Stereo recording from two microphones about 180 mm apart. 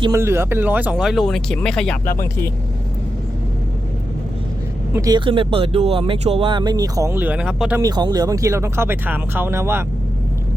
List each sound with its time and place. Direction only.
0.0 s speech: 15° right (ahead or behind); by 2.0 s 5° left (ahead or behind)
4.9 s speech: 20° right (ahead or behind); by 7.8 s 5° right (ahead or behind)
7.8 s speech: 20° right (ahead or behind)